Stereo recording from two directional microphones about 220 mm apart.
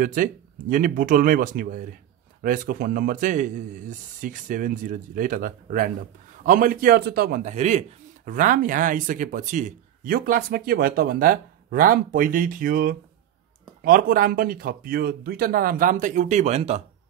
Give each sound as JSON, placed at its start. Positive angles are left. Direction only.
{"t": 0.0, "sound": "speech", "side_deg": -35}